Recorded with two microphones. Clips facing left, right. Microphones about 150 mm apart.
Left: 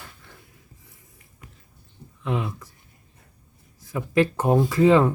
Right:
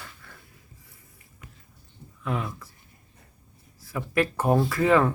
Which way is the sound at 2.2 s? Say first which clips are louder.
Left 3 dB; 20° left (ahead or behind).